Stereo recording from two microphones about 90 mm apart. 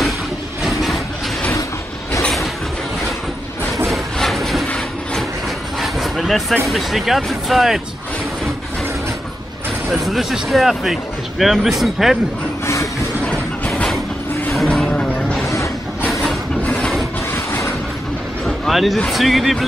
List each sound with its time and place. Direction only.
0.7 s vehicle: centre (ahead or behind)
2.2 s train: centre (ahead or behind)
3.7 s a sound: centre (ahead or behind)
5.8 s a sound: centre (ahead or behind)
6.7 s speech: centre (ahead or behind)
9.8 s speech: centre (ahead or behind)
13.3 s a sound: 10° left (ahead or behind)
14.5 s vehicle: 5° left (ahead or behind)
16.1 s train: centre (ahead or behind)
16.6 s a sound: 10° left (ahead or behind)
17.3 s vehicle: 30° left (ahead or behind)
18.4 s vehicle: centre (ahead or behind)
18.9 s speech: centre (ahead or behind)